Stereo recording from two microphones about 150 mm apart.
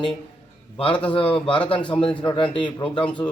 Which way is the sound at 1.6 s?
10° left (ahead or behind).